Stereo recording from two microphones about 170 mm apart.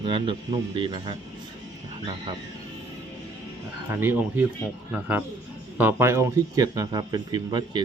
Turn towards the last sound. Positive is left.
turn(degrees=-25)  # may be behind; listen again after turning